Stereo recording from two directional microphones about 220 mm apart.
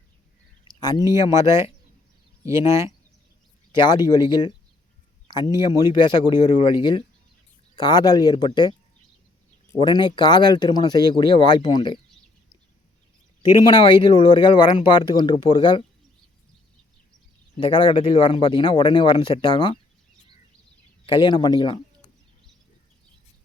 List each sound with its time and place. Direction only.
0.8 s speech: 20° left (ahead or behind)
1.4 s speech: 10° right (ahead or behind)
3.7 s speech: 20° left (ahead or behind)
7.8 s speech: 20° left (ahead or behind)
9.7 s speech: 20° left (ahead or behind)
13.7 s speech: 20° left (ahead or behind)
17.6 s speech: 20° left (ahead or behind)
21.1 s speech: 20° left (ahead or behind)